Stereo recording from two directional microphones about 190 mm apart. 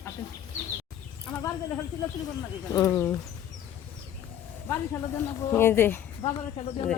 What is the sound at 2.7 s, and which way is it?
Speech, 20° left (ahead or behind).